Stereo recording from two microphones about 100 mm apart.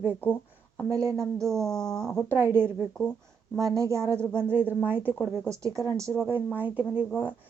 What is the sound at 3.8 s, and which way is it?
A woman's voice, 30° right (ahead or behind).